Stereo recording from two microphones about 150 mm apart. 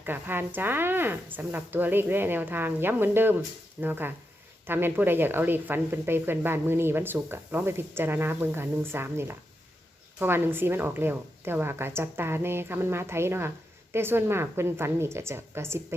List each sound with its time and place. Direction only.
0.0 s speech: 15° right (ahead or behind)